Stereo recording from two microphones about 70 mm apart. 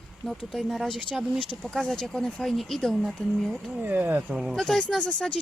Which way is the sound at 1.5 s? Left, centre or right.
Centre.